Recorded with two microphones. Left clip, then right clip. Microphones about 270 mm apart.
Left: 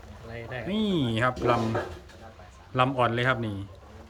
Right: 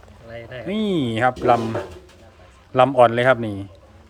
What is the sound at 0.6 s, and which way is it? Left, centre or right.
Speech, centre.